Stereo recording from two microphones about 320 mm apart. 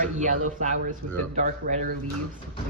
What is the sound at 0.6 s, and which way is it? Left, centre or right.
A woman's voice, right.